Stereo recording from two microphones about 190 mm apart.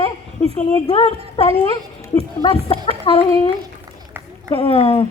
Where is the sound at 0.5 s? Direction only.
30° left (ahead or behind).